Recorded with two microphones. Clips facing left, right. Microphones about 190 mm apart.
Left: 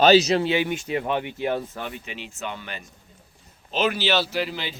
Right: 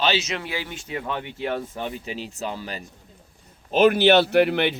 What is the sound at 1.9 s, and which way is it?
Speech, 35° right (ahead or behind).